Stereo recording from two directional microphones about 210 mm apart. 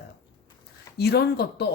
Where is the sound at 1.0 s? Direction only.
50° left (ahead or behind).